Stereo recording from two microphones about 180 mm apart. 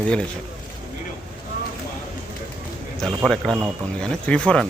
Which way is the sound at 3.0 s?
Centre (ahead or behind).